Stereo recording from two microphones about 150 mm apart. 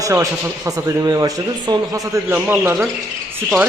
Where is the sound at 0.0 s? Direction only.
20° right (ahead or behind).